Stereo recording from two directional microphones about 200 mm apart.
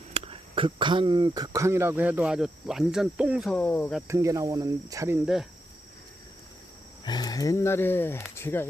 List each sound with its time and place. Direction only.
0.1 s speech: 30° right (ahead or behind); by 4.0 s 5° left (ahead or behind)
4.1 s speech: 15° right (ahead or behind)
7.0 s speech: 20° left (ahead or behind)